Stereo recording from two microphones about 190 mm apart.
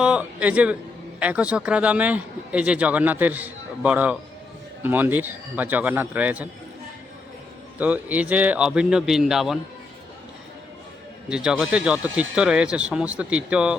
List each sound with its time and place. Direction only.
0.0 s speech: 5° right (ahead or behind)
7.8 s speech: 10° right (ahead or behind)
11.3 s speech: 5° right (ahead or behind)